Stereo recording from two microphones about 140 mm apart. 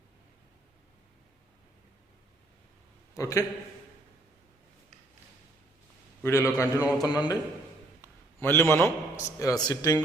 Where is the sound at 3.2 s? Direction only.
25° left (ahead or behind).